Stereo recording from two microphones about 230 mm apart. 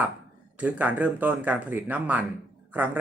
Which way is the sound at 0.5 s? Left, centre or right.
Centre.